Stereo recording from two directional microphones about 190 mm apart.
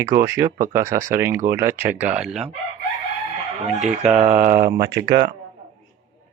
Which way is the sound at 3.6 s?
Centre (ahead or behind).